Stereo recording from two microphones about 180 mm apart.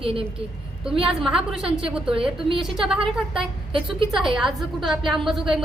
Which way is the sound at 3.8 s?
Centre (ahead or behind).